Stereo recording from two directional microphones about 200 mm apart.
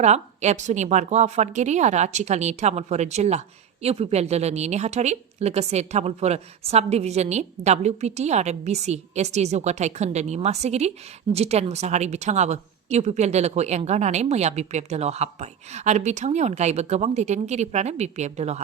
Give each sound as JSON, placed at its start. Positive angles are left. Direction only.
{"t": 0.0, "sound": "a woman's voice", "side_deg": -35}